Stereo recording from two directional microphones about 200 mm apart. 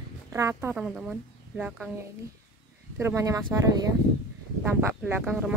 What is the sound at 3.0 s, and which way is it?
Speech, 15° right (ahead or behind).